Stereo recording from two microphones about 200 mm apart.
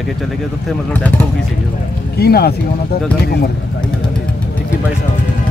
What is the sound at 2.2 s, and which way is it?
Speech, 50° left (ahead or behind).